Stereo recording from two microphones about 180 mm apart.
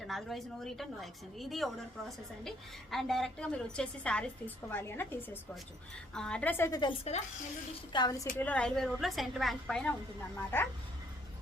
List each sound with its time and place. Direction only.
0.0 s a woman's voice: centre (ahead or behind); by 7.2 s 30° left (ahead or behind)
7.9 s a woman's voice: 20° left (ahead or behind)
8.4 s a woman's voice: 5° left (ahead or behind)